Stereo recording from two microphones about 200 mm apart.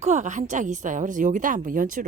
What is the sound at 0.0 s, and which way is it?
A woman's voice, 35° right (ahead or behind).